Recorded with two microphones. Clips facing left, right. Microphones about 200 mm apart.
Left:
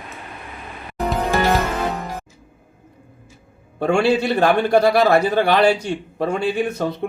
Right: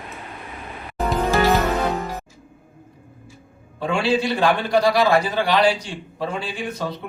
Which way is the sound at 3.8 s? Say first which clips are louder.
Left 4 dB; 55° left (ahead or behind).